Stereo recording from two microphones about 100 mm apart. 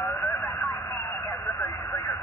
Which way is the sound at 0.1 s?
30° left (ahead or behind).